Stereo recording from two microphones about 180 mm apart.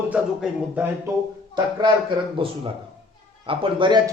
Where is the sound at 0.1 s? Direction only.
5° right (ahead or behind).